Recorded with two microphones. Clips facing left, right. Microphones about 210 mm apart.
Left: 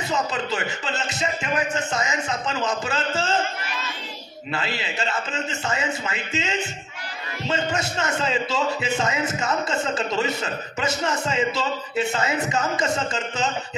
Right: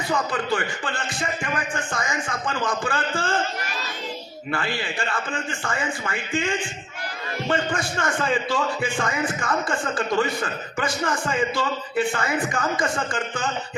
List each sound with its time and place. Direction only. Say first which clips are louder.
0.1 s a man's voice: right 2 dB; 25° left (ahead or behind)
4.5 s a man's voice: right 1 dB; 20° left (ahead or behind)